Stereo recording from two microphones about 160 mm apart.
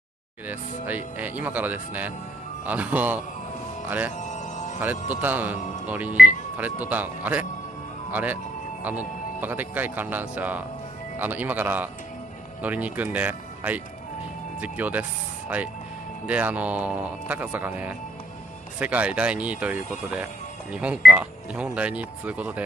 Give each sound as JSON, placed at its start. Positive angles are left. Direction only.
{"t": 0.5, "sound": "speech", "side_deg": -10}
{"t": 4.2, "sound": "music", "side_deg": 50}
{"t": 5.1, "sound": "speech", "side_deg": -10}
{"t": 16.3, "sound": "speech", "side_deg": -10}